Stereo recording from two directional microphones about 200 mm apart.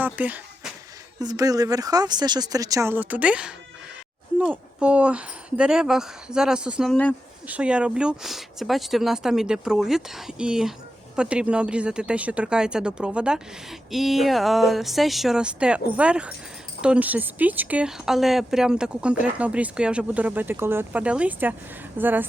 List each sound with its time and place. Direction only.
0.0 s a sound: 10° right (ahead or behind)
1.2 s speech: 20° right (ahead or behind)
6.9 s speech: 5° left (ahead or behind)
7.4 s speech: 5° right (ahead or behind)